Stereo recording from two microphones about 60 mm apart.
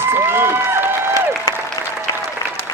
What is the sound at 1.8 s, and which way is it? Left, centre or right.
Applause, left.